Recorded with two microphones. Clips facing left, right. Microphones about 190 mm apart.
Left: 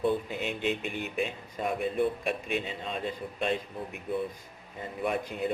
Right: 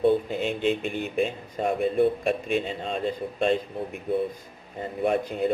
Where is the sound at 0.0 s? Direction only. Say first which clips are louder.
Right 7 dB; 30° right (ahead or behind).